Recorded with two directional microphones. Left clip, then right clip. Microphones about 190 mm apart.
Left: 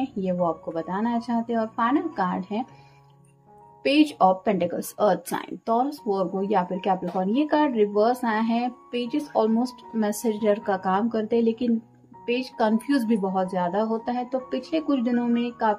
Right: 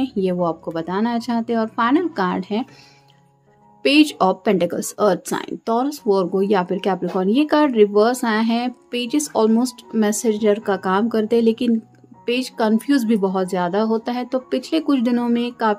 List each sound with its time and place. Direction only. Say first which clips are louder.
0.0 s speech: right 5 dB; 40° right (ahead or behind)
3.8 s speech: right 4 dB; 40° right (ahead or behind)